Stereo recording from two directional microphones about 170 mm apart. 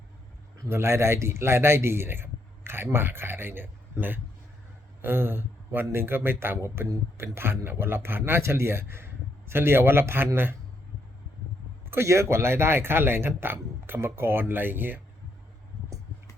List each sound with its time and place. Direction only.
0.6 s a man's voice: 15° right (ahead or behind)
11.9 s speech: 15° right (ahead or behind)